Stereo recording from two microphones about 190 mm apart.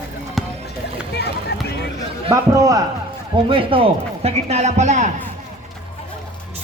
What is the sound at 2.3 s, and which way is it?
Speech, 15° right (ahead or behind).